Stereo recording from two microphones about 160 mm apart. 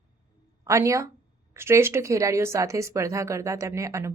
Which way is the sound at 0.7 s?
20° right (ahead or behind).